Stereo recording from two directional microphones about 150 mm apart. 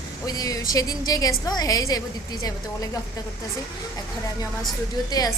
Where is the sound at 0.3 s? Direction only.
25° left (ahead or behind).